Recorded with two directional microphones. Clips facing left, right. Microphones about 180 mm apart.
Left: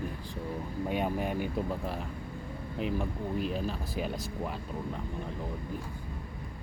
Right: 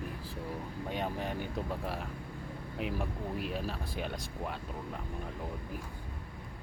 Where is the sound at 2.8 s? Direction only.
Centre (ahead or behind).